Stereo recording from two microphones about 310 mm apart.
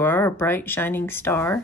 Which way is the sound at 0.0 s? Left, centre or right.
Centre.